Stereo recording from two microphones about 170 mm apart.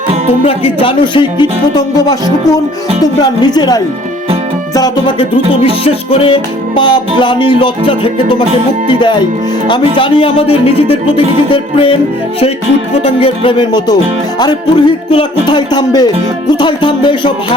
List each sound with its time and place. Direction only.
0.4 s music: 30° left (ahead or behind)
5.6 s music: 35° left (ahead or behind)
9.6 s music: 30° left (ahead or behind)
13.0 s music: 35° left (ahead or behind)